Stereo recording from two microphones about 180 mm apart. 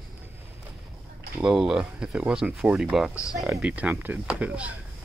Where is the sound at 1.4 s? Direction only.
5° right (ahead or behind).